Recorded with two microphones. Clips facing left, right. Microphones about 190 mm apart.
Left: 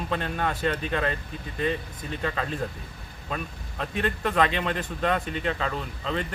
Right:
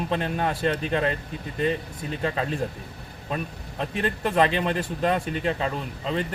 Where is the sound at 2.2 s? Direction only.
30° right (ahead or behind).